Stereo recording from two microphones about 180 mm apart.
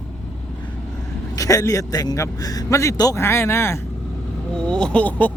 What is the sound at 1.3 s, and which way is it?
Speech, 20° left (ahead or behind).